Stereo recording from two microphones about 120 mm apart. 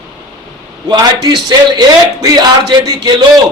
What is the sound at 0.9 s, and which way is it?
A man's voice, 35° right (ahead or behind).